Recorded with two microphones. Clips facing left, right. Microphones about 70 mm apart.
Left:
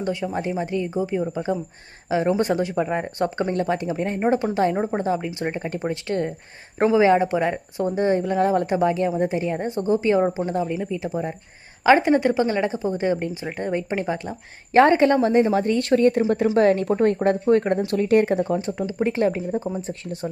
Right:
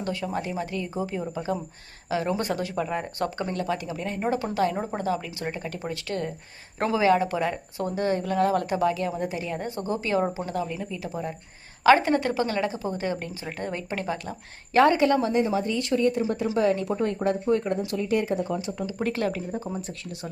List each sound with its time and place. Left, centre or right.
0.0 s a woman's voice: left
0.9 s a woman's voice: centre
10.8 s a woman's voice: centre; by 18.5 s left
18.9 s a woman's voice: left